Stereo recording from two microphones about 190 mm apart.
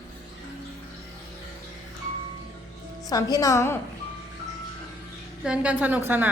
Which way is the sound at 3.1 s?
20° left (ahead or behind).